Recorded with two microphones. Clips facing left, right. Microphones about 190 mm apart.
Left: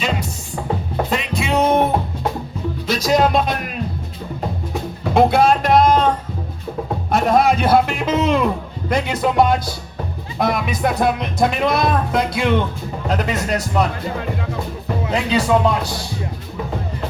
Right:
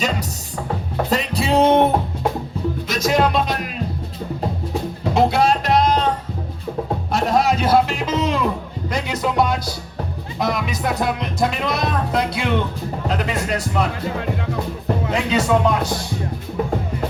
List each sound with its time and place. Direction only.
1.1 s music: 35° right (ahead or behind)
2.8 s music: 35° left (ahead or behind); by 3.6 s 50° left (ahead or behind)
5.1 s music: 55° left (ahead or behind)
7.1 s a man's voice: 55° left (ahead or behind)
8.9 s music: 55° left (ahead or behind)
13.1 s a man's voice: 40° left (ahead or behind)
15.1 s a man's voice: 35° left (ahead or behind)